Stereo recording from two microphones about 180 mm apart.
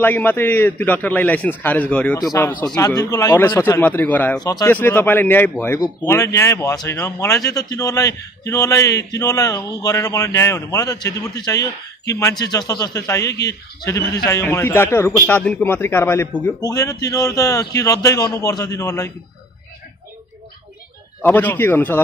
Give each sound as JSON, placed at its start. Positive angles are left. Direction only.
{"t": 0.0, "sound": "a man's voice", "side_deg": 10}
{"t": 4.4, "sound": "speech", "side_deg": 20}
{"t": 4.6, "sound": "a man's voice", "side_deg": 10}
{"t": 21.2, "sound": "a man's voice", "side_deg": 10}